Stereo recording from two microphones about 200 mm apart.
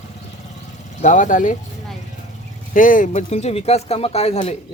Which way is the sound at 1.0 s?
40° left (ahead or behind).